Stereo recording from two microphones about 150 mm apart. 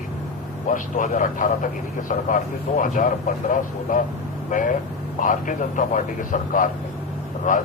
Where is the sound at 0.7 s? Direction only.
60° left (ahead or behind).